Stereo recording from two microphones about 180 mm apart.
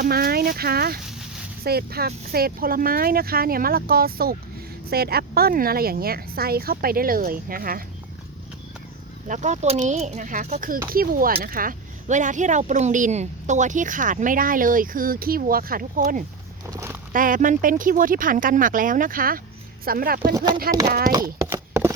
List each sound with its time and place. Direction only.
0.0 s speech: 55° right (ahead or behind)
9.2 s speech: 45° right (ahead or behind)
16.6 s speech: 15° right (ahead or behind)
17.1 s speech: 50° right (ahead or behind)
20.3 s speech: 25° right (ahead or behind)
21.1 s clip-clop: 15° right (ahead or behind)